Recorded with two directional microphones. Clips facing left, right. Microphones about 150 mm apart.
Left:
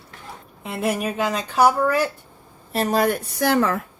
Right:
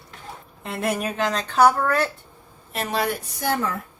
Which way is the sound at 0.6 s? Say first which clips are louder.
Left 2 dB; centre (ahead or behind).